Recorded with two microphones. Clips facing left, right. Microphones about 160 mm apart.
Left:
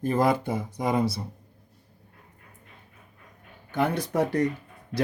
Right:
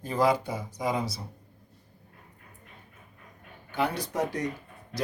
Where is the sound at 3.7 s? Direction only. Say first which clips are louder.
Left 4 dB; 50° left (ahead or behind).